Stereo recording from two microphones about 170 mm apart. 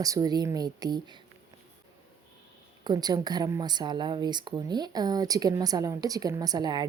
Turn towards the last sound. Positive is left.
turn(degrees=-25)  # may be behind; listen again after turning